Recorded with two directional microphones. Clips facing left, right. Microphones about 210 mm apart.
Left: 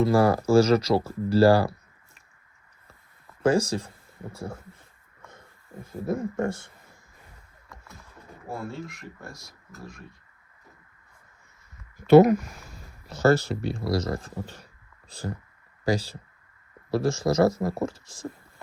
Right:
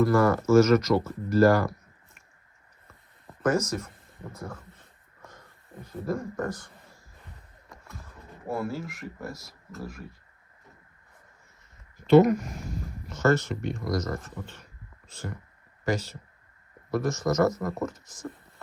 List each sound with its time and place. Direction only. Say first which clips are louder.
0.0 s speech: left 1 dB; 35° left (ahead or behind)
3.4 s speech: left 3 dB; 30° left (ahead or behind)
5.6 s speech: left 2 dB; centre (ahead or behind)
6.1 s speech: left 3 dB; 25° left (ahead or behind)
8.7 s speech: right 2 dB; 5° right (ahead or behind)
13.1 s speech: left 3 dB; 35° left (ahead or behind)